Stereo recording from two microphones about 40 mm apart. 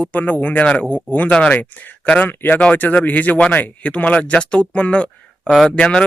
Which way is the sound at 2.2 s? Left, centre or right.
Left.